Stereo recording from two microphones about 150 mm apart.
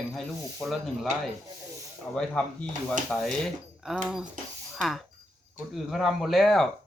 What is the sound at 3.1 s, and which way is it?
Speech, centre (ahead or behind).